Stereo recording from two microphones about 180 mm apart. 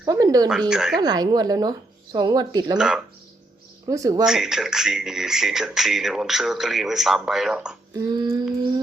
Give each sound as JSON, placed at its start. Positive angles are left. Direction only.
{"t": 0.0, "sound": "a sound", "side_deg": -20}
{"t": 0.7, "sound": "speech", "side_deg": 0}
{"t": 1.0, "sound": "speech", "side_deg": -20}
{"t": 2.7, "sound": "speech", "side_deg": -5}
{"t": 3.8, "sound": "speech", "side_deg": -20}
{"t": 4.3, "sound": "speech", "side_deg": 0}
{"t": 7.9, "sound": "speech", "side_deg": -20}